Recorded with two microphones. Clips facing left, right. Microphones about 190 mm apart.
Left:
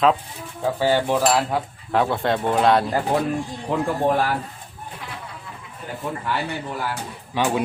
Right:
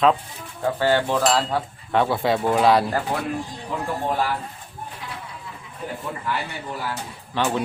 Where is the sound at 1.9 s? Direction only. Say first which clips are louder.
Even; centre (ahead or behind).